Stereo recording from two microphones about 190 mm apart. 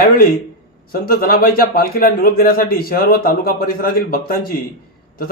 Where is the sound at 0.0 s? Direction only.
50° left (ahead or behind).